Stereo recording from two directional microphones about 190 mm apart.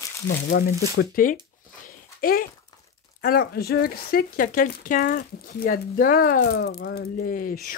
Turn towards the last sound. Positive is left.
turn(degrees=45)  # may be behind; listen again after turning